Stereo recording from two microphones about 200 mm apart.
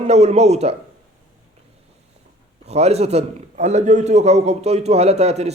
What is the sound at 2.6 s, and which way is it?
A man's voice, 30° right (ahead or behind).